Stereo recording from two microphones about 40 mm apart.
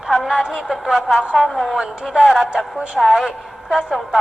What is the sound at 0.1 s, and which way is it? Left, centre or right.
A woman's voice, centre.